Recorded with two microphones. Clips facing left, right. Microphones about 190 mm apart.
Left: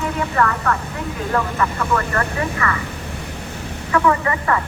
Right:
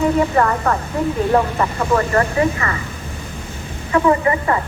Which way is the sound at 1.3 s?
25° right (ahead or behind).